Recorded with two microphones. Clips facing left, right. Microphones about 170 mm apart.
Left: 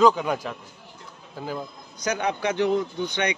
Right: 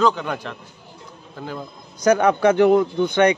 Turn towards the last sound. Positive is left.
turn(degrees=-50)  # may be behind; listen again after turning